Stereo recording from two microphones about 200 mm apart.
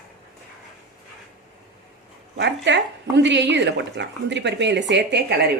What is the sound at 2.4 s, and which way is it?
Speech, 60° right (ahead or behind).